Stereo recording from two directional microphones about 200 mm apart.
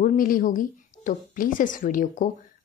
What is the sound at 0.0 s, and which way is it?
Speech, 45° left (ahead or behind).